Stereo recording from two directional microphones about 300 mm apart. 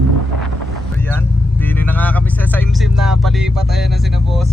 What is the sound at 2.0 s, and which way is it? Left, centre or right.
Vehicle, centre.